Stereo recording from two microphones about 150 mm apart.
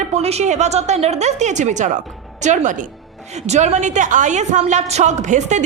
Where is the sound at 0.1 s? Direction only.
45° right (ahead or behind).